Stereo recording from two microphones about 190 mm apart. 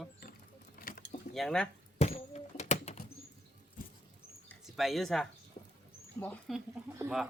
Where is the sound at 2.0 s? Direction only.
35° left (ahead or behind).